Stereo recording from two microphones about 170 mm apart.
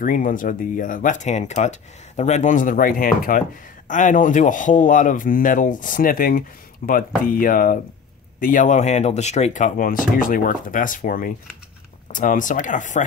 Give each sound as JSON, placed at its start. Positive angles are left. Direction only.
{"t": 0.0, "sound": "speech", "side_deg": 55}